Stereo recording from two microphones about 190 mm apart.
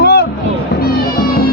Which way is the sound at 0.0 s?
60° left (ahead or behind).